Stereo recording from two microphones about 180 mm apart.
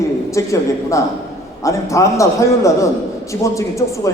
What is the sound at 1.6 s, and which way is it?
A man's voice, 15° left (ahead or behind).